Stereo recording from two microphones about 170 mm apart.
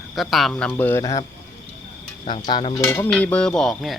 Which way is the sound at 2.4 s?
30° left (ahead or behind).